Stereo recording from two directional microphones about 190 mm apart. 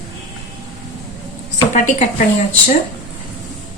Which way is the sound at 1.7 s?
40° left (ahead or behind).